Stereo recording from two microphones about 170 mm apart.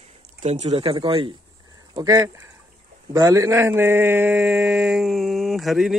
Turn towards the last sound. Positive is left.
turn(degrees=0)  # may be behind; listen again after turning